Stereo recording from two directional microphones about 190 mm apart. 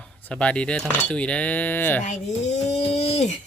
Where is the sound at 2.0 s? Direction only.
40° left (ahead or behind).